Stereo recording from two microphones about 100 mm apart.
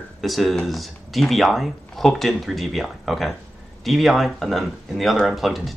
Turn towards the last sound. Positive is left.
turn(degrees=0)  # may be behind; listen again after turning